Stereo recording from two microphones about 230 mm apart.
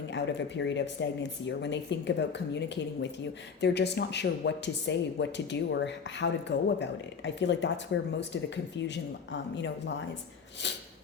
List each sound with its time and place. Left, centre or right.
0.1 s speech: left